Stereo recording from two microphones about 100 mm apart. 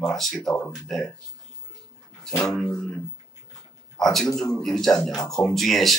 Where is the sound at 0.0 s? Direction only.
5° left (ahead or behind).